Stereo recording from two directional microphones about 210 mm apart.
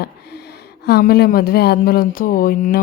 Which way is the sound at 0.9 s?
50° left (ahead or behind).